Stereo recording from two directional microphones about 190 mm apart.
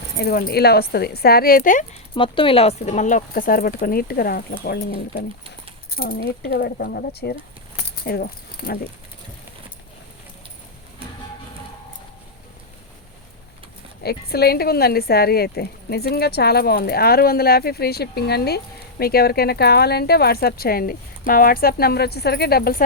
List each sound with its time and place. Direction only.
0.2 s speech: 55° left (ahead or behind)
2.1 s speech: 25° left (ahead or behind); by 8.8 s 55° left (ahead or behind)
14.0 s speech: 55° left (ahead or behind)